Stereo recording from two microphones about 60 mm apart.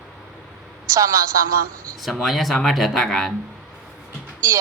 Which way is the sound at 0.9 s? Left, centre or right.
Right.